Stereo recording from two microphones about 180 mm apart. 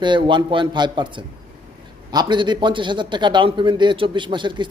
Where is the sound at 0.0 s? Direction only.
25° right (ahead or behind).